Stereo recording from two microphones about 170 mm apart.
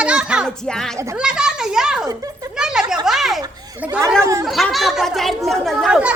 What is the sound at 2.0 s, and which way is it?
Speech, 20° right (ahead or behind).